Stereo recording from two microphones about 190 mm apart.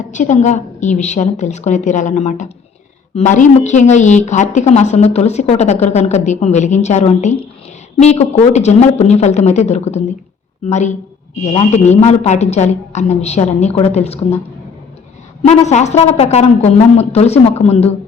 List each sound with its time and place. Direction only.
0.0 s a woman's voice: 40° left (ahead or behind)
15.4 s a woman's voice: 35° left (ahead or behind)